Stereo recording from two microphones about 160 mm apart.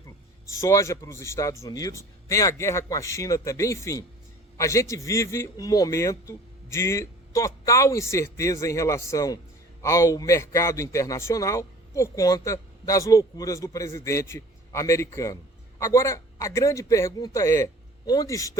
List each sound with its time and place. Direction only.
0.6 s a man's voice: 20° left (ahead or behind)